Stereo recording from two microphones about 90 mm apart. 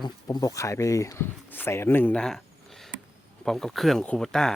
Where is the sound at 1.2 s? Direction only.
25° left (ahead or behind).